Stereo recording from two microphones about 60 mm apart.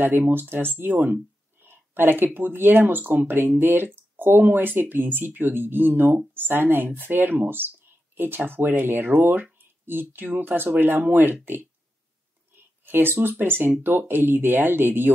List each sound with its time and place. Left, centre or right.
0.0 s speech: right
12.8 s speech: right